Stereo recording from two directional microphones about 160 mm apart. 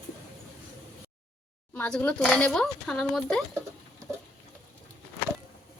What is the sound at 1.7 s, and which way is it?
Speech, 10° left (ahead or behind).